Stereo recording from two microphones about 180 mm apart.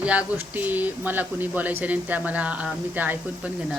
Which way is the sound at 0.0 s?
5° right (ahead or behind).